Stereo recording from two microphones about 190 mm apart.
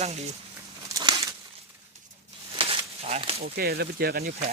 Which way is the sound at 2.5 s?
30° right (ahead or behind).